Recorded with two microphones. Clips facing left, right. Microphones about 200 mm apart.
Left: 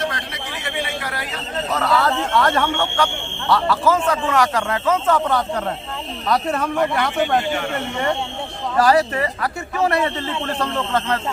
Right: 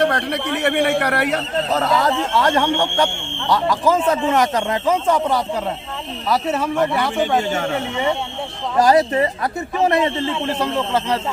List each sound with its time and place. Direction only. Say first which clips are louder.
0.0 s a man's voice: right 8 dB; 60° right (ahead or behind)
1.7 s speech: right 1 dB; 20° right (ahead or behind); by 7.4 s centre (ahead or behind)
8.8 s a man's voice: right 2 dB; 20° right (ahead or behind)